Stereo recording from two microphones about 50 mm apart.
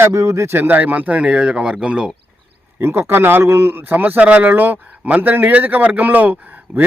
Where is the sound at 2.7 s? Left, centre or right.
Right.